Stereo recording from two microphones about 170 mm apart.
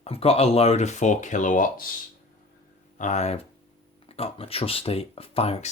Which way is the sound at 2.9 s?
45° left (ahead or behind).